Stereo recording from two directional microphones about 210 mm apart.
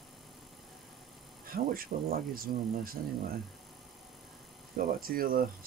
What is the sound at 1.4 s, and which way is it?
Speech, 45° right (ahead or behind).